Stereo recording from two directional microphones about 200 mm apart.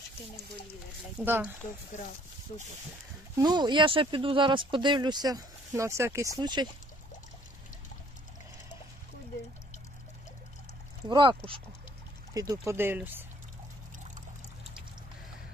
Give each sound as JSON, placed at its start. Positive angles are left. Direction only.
{"t": 1.2, "sound": "speech", "side_deg": -10}
{"t": 3.3, "sound": "speech", "side_deg": -20}
{"t": 11.1, "sound": "speech", "side_deg": -25}